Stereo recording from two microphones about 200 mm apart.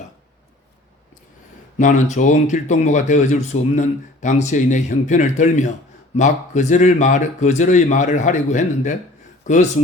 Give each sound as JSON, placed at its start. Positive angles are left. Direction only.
{"t": 1.8, "sound": "speech", "side_deg": 40}